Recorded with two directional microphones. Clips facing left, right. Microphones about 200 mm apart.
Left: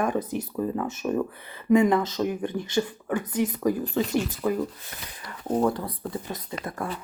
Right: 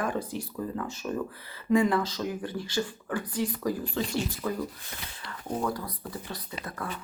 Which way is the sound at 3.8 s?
40° left (ahead or behind).